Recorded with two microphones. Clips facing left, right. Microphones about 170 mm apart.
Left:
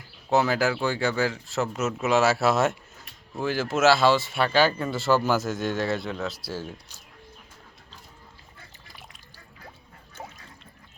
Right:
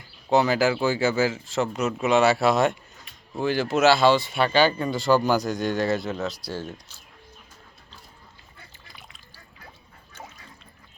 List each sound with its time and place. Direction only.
0.3 s speech: centre (ahead or behind)